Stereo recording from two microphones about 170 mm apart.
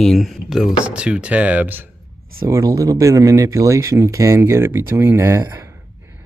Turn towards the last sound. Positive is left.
turn(degrees=-20)  # may be behind; listen again after turning